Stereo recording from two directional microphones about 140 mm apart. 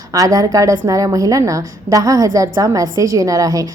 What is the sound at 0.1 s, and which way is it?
A woman's voice, 25° right (ahead or behind).